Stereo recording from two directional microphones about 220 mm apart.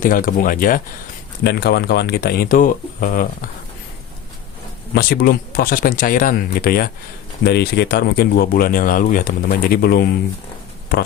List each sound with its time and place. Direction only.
0.0 s speech: 40° left (ahead or behind)
4.9 s speech: 45° left (ahead or behind)